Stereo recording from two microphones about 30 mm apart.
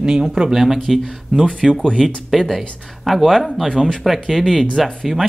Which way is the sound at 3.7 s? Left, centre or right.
Centre.